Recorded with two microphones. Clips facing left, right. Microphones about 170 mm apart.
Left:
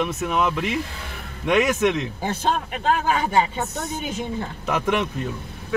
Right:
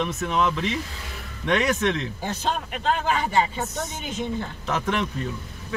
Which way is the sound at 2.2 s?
50° left (ahead or behind).